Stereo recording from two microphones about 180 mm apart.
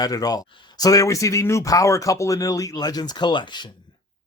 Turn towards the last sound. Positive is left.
turn(degrees=25)  # may be behind; listen again after turning